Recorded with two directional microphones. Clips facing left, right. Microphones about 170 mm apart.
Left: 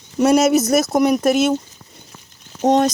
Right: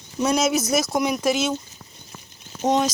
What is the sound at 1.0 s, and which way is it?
Speech, 40° left (ahead or behind).